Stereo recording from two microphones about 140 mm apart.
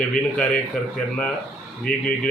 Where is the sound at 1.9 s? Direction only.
90° left.